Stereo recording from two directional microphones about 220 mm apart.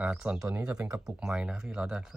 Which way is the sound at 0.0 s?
5° right (ahead or behind).